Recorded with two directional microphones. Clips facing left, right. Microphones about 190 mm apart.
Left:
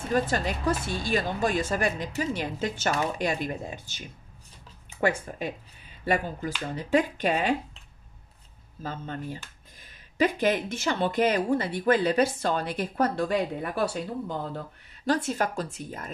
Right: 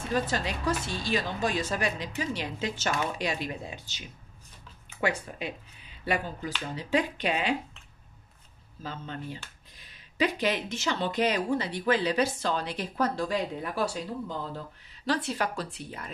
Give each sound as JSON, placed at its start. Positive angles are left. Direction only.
{"t": 0.1, "sound": "speech", "side_deg": 50}
{"t": 5.0, "sound": "speech", "side_deg": 50}
{"t": 8.8, "sound": "speech", "side_deg": 45}
{"t": 15.0, "sound": "speech", "side_deg": 45}